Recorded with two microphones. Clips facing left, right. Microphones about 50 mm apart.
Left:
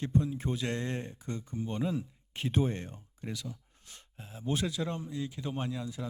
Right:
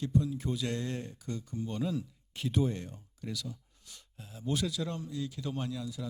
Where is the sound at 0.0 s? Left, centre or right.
Left.